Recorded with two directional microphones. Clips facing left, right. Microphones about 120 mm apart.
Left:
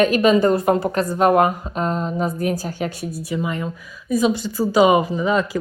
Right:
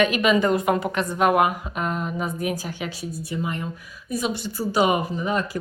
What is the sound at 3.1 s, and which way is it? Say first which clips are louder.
Speech: left 4 dB; 90° left.